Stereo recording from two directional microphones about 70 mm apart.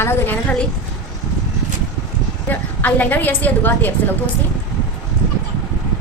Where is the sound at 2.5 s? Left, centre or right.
Left.